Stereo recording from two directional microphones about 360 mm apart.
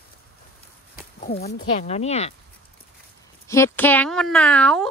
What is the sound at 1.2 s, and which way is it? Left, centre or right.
Speech, left.